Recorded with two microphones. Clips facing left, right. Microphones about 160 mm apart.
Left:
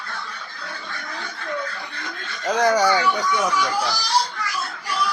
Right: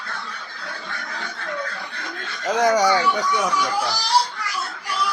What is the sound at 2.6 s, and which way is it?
Speech, 20° right (ahead or behind).